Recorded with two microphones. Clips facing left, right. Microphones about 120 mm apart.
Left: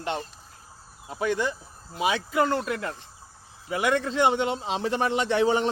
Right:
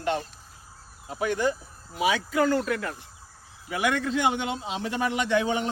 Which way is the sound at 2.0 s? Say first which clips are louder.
Even; 25° left (ahead or behind).